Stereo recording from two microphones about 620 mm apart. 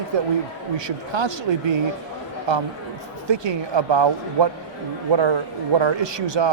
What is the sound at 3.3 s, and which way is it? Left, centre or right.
Speech, right.